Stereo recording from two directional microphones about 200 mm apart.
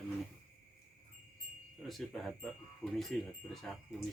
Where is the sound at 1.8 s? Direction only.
Centre (ahead or behind).